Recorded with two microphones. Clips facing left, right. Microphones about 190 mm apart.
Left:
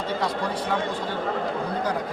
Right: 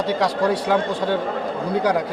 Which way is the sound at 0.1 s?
80° right.